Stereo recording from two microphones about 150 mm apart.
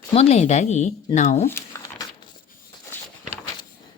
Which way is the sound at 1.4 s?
15° left (ahead or behind).